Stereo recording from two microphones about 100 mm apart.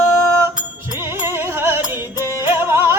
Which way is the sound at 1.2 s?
25° right (ahead or behind).